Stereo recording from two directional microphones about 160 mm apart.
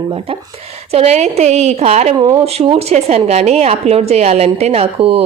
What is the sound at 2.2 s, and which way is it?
Speech, 20° right (ahead or behind).